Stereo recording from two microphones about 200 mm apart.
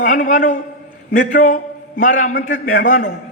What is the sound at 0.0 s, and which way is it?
A man's voice, 40° left (ahead or behind).